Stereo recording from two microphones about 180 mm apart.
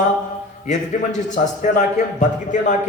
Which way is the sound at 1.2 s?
45° left (ahead or behind).